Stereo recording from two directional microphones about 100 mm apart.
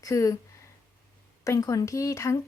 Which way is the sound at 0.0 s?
35° left (ahead or behind).